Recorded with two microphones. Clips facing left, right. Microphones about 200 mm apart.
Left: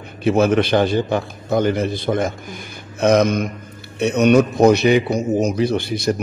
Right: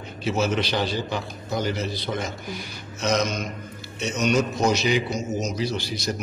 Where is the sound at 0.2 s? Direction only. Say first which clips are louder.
Left 9 dB; 55° left (ahead or behind).